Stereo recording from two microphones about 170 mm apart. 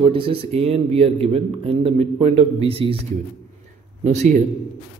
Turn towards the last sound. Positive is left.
turn(degrees=-45)  # may be behind; listen again after turning